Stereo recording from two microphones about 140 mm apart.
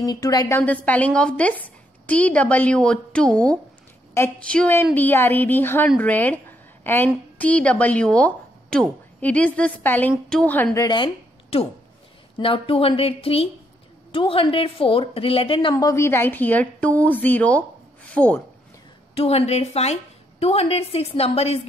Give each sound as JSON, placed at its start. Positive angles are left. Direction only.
{"t": 0.0, "sound": "a woman's voice", "side_deg": 25}
{"t": 0.6, "sound": "a woman's voice", "side_deg": 10}
{"t": 12.4, "sound": "a woman's voice", "side_deg": 40}
{"t": 15.7, "sound": "a woman's voice", "side_deg": 25}
{"t": 19.1, "sound": "a woman's voice", "side_deg": 45}